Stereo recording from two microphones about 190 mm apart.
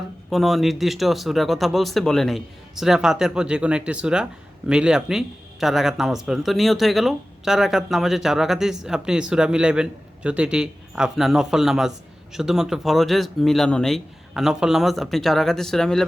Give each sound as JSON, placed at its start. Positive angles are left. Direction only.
{"t": 0.3, "sound": "speech", "side_deg": 0}